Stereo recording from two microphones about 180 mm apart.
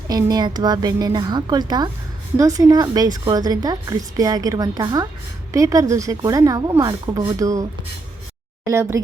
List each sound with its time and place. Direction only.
0.1 s a woman's voice: 20° right (ahead or behind)
8.6 s speech: 15° right (ahead or behind)